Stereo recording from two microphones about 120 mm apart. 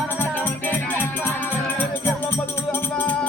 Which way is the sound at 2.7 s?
15° left (ahead or behind).